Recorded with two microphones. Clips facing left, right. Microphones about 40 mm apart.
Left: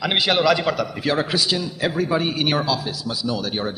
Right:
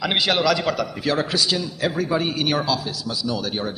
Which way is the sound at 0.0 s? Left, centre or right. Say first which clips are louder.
Left 1 dB; centre.